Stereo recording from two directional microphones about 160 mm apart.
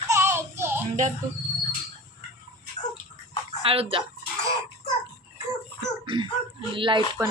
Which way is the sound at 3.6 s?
35° right (ahead or behind).